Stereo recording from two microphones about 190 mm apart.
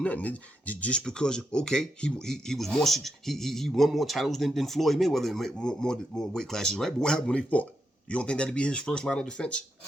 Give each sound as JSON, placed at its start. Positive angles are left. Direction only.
{"t": 0.0, "sound": "speech", "side_deg": 10}